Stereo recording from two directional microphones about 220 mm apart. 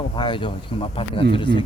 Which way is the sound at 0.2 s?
20° left (ahead or behind).